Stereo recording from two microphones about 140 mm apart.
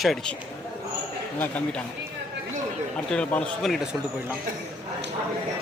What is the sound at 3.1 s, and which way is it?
Speech, 5° left (ahead or behind).